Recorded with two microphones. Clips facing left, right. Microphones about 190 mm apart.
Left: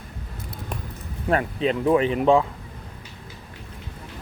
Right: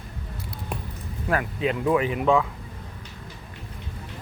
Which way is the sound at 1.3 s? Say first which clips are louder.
Left 3 dB; 25° left (ahead or behind).